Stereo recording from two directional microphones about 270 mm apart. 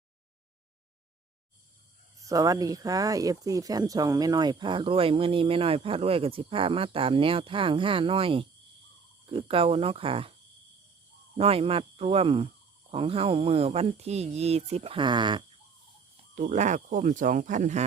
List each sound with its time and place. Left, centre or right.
2.2 s speech: centre
11.3 s speech: right
16.3 s speech: right